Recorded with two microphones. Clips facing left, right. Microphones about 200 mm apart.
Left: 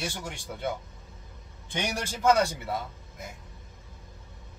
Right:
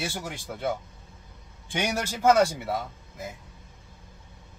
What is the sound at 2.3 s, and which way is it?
Speech, centre (ahead or behind).